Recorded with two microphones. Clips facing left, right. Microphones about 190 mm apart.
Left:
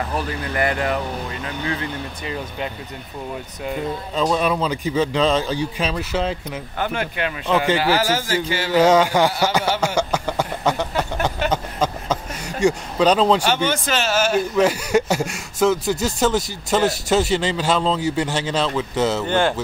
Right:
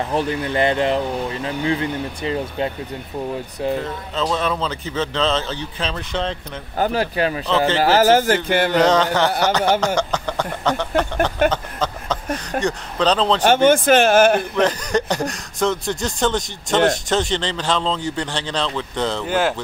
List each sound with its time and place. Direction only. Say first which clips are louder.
0.1 s speech: right 4 dB; 25° right (ahead or behind)
4.1 s speech: left 2 dB; 10° left (ahead or behind)
6.8 s speech: right 5 dB; 35° right (ahead or behind)
7.4 s speech: left 3 dB; 10° left (ahead or behind)
7.8 s speech: right 6 dB; 45° right (ahead or behind)
8.5 s a sound: right 6 dB; 55° right (ahead or behind)
8.7 s speech: left 4 dB; 10° left (ahead or behind)
11.5 s a sound: left 2 dB; 10° left (ahead or behind)
12.4 s speech: left 6 dB; 10° left (ahead or behind)
13.5 s speech: right 8 dB; 50° right (ahead or behind)
14.5 s speech: left 2 dB; 10° left (ahead or behind)